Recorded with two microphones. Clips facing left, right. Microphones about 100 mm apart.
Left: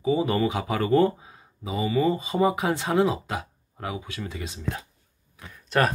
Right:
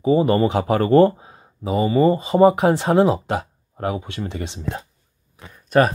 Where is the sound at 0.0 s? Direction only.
45° right (ahead or behind).